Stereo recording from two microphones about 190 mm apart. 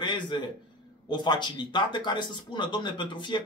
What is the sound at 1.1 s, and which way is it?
Speech, 25° left (ahead or behind).